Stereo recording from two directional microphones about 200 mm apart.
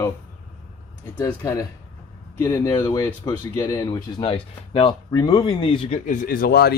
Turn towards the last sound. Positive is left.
turn(degrees=50)  # may be behind; listen again after turning